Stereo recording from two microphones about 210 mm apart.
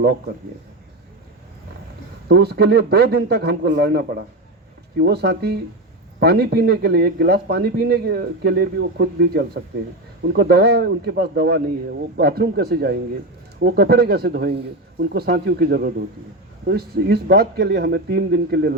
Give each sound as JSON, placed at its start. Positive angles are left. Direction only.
{"t": 2.2, "sound": "speech", "side_deg": -50}